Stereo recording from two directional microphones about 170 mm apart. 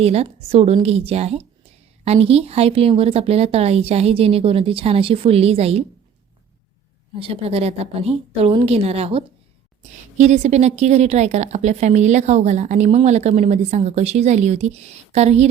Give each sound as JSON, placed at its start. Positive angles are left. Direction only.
{"t": 0.0, "sound": "a woman's voice", "side_deg": -35}
{"t": 7.2, "sound": "a woman's voice", "side_deg": -35}